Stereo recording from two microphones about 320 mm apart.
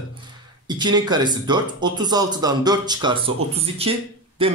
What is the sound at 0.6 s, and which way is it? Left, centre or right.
A man's voice, centre.